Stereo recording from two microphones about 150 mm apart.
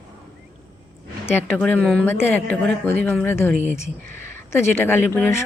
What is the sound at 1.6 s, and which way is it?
Speech, centre (ahead or behind).